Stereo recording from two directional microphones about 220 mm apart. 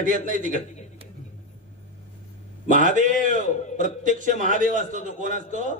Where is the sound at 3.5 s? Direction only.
30° left (ahead or behind).